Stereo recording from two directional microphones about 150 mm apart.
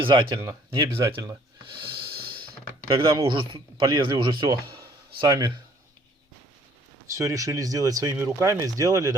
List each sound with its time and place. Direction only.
0.0 s speech: 35° right (ahead or behind)
3.2 s speech: 35° right (ahead or behind)
7.1 s speech: 20° right (ahead or behind)